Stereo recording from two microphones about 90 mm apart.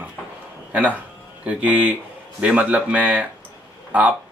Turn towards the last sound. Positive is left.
turn(degrees=-15)  # may be behind; listen again after turning